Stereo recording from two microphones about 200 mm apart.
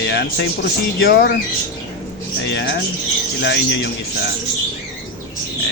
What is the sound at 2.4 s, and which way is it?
A man's voice, 60° left (ahead or behind).